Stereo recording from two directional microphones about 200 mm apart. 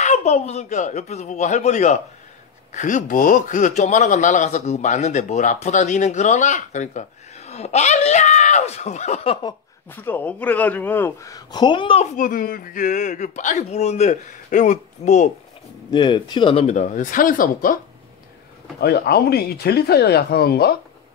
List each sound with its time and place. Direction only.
0.0 s a man's voice: 35° left (ahead or behind)
9.8 s a man's voice: 10° left (ahead or behind); by 12.1 s 25° left (ahead or behind)
12.2 s a man's voice: 45° left (ahead or behind)
15.9 s a man's voice: 20° left (ahead or behind); by 17.7 s 45° left (ahead or behind)
18.8 s speech: 50° left (ahead or behind)